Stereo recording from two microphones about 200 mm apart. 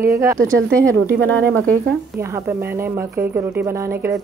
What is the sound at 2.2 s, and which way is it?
A woman's voice, 15° right (ahead or behind).